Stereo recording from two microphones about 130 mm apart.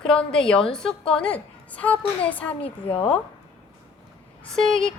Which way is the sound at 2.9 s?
45° left (ahead or behind).